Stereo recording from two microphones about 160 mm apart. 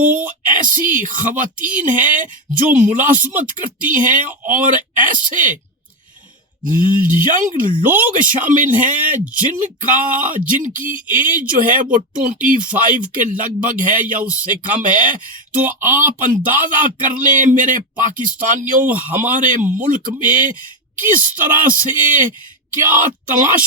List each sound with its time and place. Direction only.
0.1 s speech: 55° right (ahead or behind)
6.7 s speech: 55° right (ahead or behind)
16.2 s speech: 55° right (ahead or behind)